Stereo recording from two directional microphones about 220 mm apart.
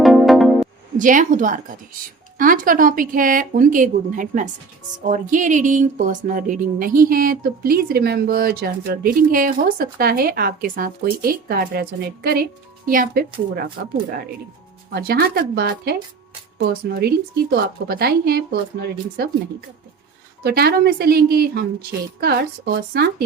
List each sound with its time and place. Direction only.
0.0 s music: centre (ahead or behind)
0.9 s speech: 35° right (ahead or behind)
14.9 s a woman's voice: 45° right (ahead or behind)
20.4 s a woman's voice: 45° right (ahead or behind)